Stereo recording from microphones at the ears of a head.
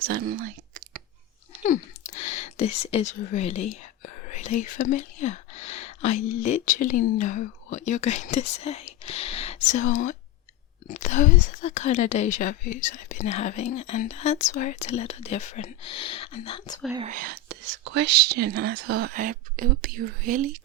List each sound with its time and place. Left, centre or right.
0.0 s whispering: right
1.6 s speech: left
17.1 s speech: right